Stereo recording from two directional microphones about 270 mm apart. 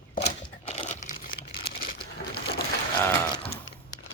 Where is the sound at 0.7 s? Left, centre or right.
Left.